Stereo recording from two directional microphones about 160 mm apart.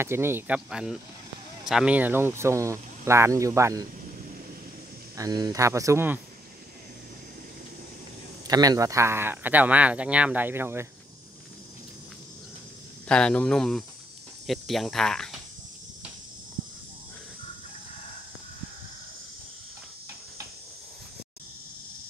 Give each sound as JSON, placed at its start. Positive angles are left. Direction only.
{"t": 0.0, "sound": "speech", "side_deg": -15}
{"t": 5.1, "sound": "speech", "side_deg": -25}
{"t": 8.5, "sound": "speech", "side_deg": -25}
{"t": 13.1, "sound": "speech", "side_deg": 5}